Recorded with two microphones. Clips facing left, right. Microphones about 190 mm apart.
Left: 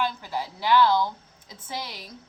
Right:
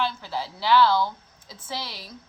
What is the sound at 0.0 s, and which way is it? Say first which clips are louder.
A woman's voice: even; 15° left (ahead or behind).